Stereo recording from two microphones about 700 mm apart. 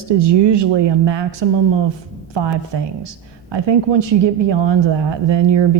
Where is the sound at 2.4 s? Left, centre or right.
Right.